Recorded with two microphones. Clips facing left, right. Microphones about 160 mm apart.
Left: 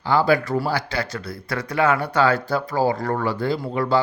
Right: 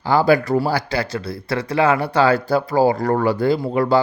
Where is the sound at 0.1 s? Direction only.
40° right (ahead or behind).